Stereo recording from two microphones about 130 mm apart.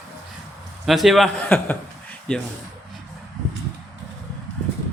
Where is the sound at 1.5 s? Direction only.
15° left (ahead or behind).